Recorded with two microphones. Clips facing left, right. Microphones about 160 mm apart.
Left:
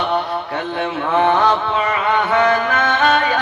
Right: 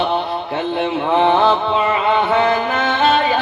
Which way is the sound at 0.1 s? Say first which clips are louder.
Even; 20° right (ahead or behind).